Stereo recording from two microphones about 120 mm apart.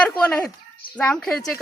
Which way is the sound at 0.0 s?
10° left (ahead or behind).